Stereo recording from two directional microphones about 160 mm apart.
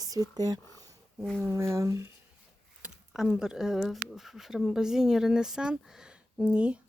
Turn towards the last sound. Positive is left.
turn(degrees=-5)  # may be behind; listen again after turning